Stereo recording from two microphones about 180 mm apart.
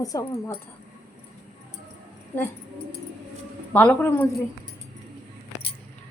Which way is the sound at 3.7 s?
10° left (ahead or behind).